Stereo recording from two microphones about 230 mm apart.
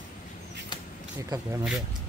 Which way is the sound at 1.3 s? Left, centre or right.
Centre.